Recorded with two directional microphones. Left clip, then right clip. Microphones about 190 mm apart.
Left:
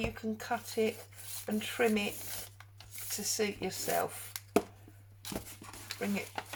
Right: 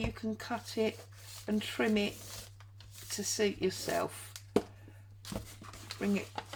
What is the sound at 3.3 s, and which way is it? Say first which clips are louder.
Speech: right 3 dB; 45° right (ahead or behind).